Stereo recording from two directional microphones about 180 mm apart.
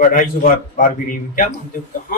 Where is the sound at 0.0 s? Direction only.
50° left (ahead or behind).